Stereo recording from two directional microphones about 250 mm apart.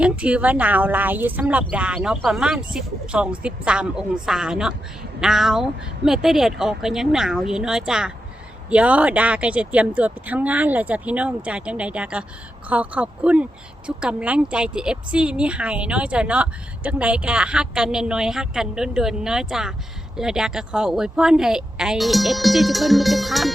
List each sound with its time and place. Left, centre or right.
0.0 s speech: centre